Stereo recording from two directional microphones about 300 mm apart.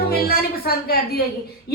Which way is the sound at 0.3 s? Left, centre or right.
Left.